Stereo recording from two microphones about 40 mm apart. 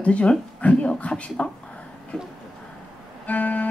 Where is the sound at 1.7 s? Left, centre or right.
Left.